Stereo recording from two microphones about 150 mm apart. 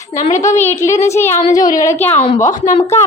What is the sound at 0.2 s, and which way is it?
Speech, 50° left (ahead or behind).